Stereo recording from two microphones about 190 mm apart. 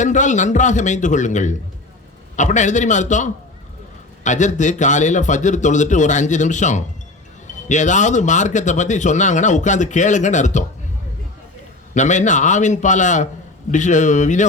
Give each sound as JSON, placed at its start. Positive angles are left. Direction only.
{"t": 0.0, "sound": "speech", "side_deg": 40}
{"t": 11.9, "sound": "speech", "side_deg": 40}